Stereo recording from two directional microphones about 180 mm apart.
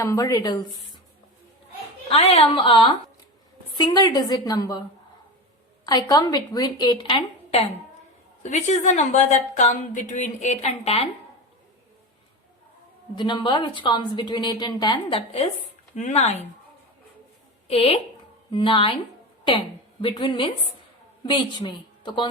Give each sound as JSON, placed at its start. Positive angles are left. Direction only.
{"t": 0.0, "sound": "a woman's voice", "side_deg": 20}
{"t": 2.0, "sound": "a woman's voice", "side_deg": 35}
{"t": 5.8, "sound": "a woman's voice", "side_deg": 20}
{"t": 8.4, "sound": "a woman's voice", "side_deg": 40}
{"t": 13.1, "sound": "a woman's voice", "side_deg": 25}
{"t": 17.7, "sound": "a woman's voice", "side_deg": 35}